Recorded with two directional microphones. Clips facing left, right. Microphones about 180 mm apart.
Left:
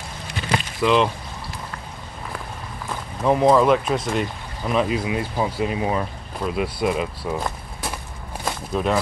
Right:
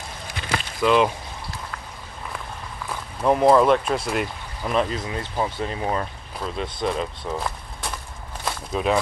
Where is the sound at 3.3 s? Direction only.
Centre (ahead or behind).